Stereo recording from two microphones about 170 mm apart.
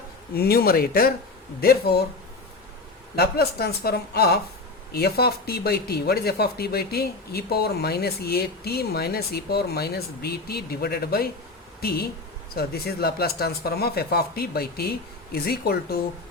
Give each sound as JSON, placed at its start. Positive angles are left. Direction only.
{"t": 0.3, "sound": "speech", "side_deg": 65}
{"t": 3.2, "sound": "speech", "side_deg": 70}